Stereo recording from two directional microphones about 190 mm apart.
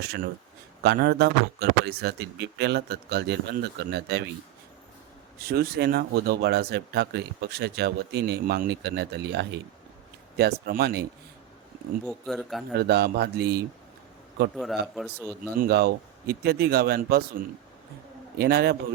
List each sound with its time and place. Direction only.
0.8 s speech: 60° right (ahead or behind)
5.5 s speech: 55° right (ahead or behind)
12.0 s a man's voice: centre (ahead or behind)
12.8 s speech: 60° right (ahead or behind)
14.5 s a man's voice: centre (ahead or behind)
15.5 s speech: 55° right (ahead or behind)
18.3 s speech: 55° right (ahead or behind)